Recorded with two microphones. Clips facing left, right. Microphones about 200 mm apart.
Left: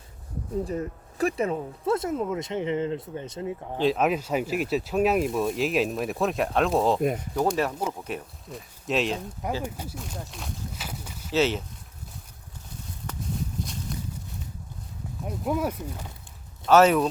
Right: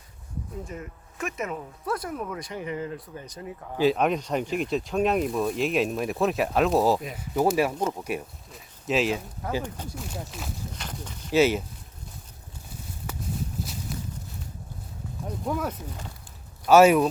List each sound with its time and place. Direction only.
0.6 s speech: 35° left (ahead or behind)
3.8 s speech: centre (ahead or behind)
9.6 s speech: 10° left (ahead or behind)
10.0 s speech: 5° right (ahead or behind)
13.1 s walk: 5° right (ahead or behind)
15.4 s speech: 10° left (ahead or behind)
16.6 s speech: 10° right (ahead or behind)